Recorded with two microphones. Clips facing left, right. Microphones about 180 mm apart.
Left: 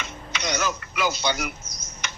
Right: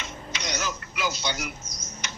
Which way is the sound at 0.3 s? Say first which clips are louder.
Left 5 dB; 60° left (ahead or behind).